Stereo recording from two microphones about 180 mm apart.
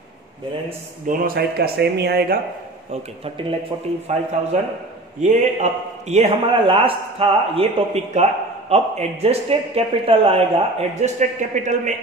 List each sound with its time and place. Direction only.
1.0 s speech: 50° right (ahead or behind)
2.9 s a man's voice: 30° right (ahead or behind)